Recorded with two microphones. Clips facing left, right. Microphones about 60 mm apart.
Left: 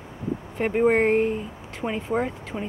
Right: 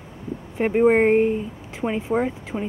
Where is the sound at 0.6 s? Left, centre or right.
Centre.